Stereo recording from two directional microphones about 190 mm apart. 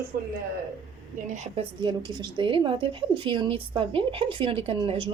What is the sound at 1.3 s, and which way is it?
Speech, 40° right (ahead or behind).